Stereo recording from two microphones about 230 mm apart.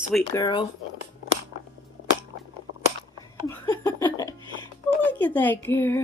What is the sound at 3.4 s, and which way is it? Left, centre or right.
Laughter, centre.